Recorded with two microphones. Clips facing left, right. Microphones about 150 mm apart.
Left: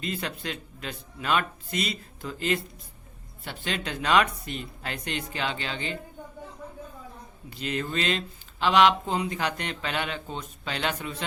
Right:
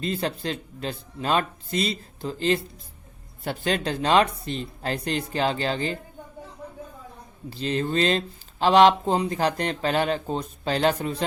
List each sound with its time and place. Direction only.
0.0 s speech: 35° right (ahead or behind)
3.4 s speech: 40° right (ahead or behind)
7.5 s speech: 30° right (ahead or behind)